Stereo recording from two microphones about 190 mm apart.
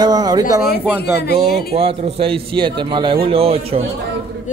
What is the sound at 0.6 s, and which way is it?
Speech, 10° right (ahead or behind).